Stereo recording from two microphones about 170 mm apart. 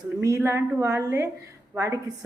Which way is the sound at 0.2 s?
15° right (ahead or behind).